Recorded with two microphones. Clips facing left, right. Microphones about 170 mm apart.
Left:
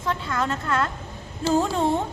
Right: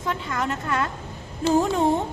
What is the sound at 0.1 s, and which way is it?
Speech, 15° right (ahead or behind).